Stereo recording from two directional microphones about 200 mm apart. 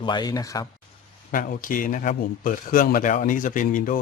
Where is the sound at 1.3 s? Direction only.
40° left (ahead or behind).